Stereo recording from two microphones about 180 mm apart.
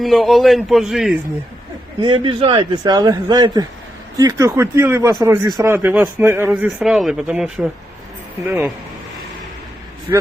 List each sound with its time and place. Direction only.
0.0 s a man's voice: centre (ahead or behind)
2.0 s a man's voice: 25° right (ahead or behind); by 8.7 s 10° right (ahead or behind)
10.1 s speech: 20° right (ahead or behind)